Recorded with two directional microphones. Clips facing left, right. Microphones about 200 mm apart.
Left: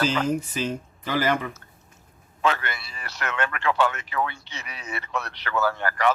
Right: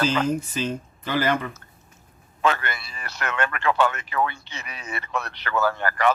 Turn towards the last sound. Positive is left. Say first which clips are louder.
# right 1 dB
turn(degrees=-50)  # may be behind; listen again after turning